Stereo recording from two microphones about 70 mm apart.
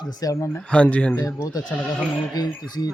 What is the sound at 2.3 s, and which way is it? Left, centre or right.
Speech, left.